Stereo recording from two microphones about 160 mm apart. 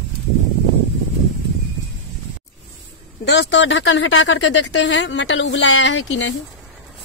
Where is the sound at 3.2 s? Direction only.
90° left.